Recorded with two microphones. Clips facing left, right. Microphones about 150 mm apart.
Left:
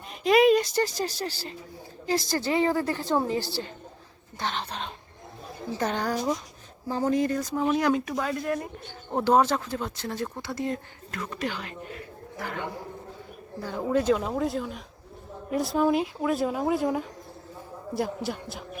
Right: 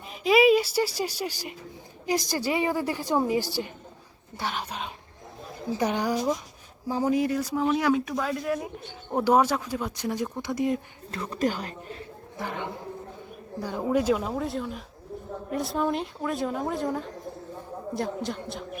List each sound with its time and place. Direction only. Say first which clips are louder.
0.1 s a woman's voice: even; 5° right (ahead or behind)
11.1 s speech: right 5 dB; 35° right (ahead or behind)
12.4 s a man's voice: right 1 dB; 20° right (ahead or behind); by 18.6 s 5° left (ahead or behind)